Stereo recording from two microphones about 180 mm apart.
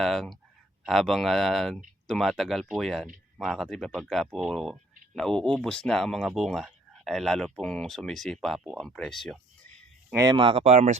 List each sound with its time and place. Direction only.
0.0 s speech: centre (ahead or behind)
10.2 s speech: 25° right (ahead or behind)